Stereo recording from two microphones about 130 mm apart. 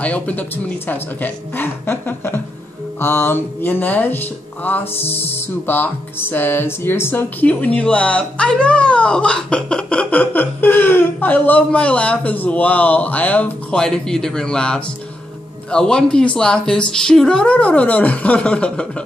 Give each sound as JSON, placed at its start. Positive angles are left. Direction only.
{"t": 0.0, "sound": "music", "side_deg": 10}